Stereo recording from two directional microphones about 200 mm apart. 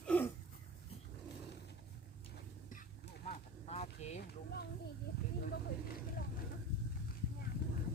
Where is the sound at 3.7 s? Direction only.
35° left (ahead or behind).